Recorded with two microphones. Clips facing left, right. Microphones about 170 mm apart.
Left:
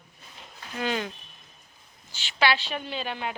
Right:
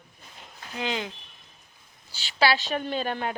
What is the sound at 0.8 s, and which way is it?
Speech, 15° right (ahead or behind).